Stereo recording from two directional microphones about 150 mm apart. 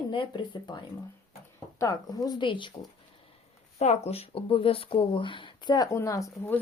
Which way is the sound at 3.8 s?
45° left (ahead or behind).